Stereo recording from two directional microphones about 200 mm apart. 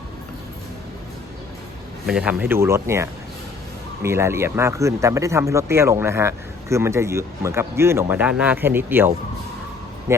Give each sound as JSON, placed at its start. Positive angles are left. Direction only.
{"t": 2.0, "sound": "speech", "side_deg": -5}